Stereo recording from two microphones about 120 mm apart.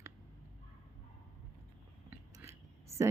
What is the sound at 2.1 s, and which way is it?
Whispering, 25° right (ahead or behind).